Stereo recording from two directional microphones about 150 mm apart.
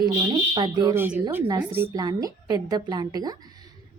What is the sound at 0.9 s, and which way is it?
Speech, 15° right (ahead or behind).